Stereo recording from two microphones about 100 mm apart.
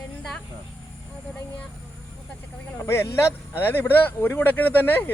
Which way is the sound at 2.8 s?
25° left (ahead or behind).